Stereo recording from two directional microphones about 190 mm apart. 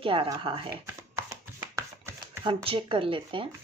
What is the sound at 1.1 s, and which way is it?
Chopping, 15° right (ahead or behind).